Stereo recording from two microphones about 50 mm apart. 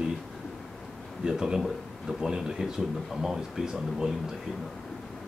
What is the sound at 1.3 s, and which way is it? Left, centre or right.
Speech, centre.